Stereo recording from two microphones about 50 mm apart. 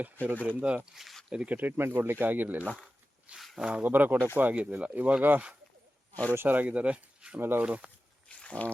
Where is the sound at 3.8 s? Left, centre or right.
Right.